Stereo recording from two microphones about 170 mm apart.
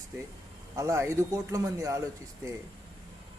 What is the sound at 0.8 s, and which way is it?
A man's voice, 15° right (ahead or behind).